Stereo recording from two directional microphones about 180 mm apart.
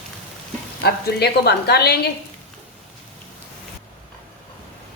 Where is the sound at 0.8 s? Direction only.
60° left (ahead or behind).